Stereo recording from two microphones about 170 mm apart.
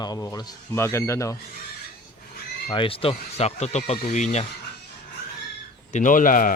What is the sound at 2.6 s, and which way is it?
Speech, 30° left (ahead or behind).